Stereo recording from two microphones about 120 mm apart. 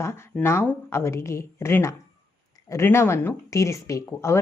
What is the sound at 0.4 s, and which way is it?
Speech, 20° left (ahead or behind).